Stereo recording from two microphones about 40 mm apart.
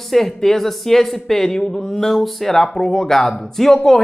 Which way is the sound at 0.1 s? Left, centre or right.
Centre.